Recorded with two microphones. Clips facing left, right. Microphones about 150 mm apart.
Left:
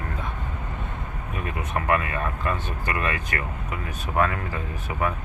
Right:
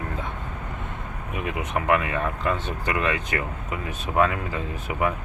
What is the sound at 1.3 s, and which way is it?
Speech, 15° right (ahead or behind).